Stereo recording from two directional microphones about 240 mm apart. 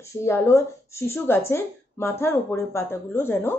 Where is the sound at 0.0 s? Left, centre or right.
Centre.